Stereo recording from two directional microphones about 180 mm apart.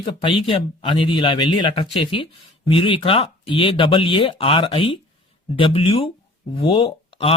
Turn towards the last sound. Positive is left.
turn(degrees=30)  # may be behind; listen again after turning